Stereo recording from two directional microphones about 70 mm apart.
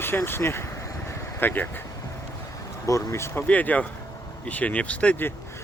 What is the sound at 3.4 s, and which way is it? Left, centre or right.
Speech, left.